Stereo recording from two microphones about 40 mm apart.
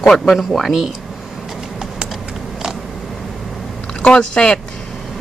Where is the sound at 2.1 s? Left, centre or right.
Centre.